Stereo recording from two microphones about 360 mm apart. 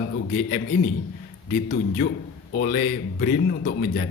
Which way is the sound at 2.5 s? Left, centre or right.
Left.